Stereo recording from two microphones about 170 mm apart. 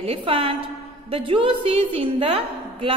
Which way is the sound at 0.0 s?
35° right (ahead or behind).